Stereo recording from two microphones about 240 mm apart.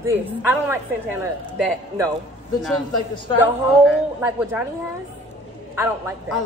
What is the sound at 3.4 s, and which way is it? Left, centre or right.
A woman's voice, centre.